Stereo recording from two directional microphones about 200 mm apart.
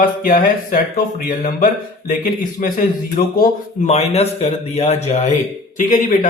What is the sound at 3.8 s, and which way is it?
Speech, 30° left (ahead or behind).